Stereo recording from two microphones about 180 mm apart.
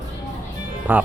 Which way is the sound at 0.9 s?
10° right (ahead or behind).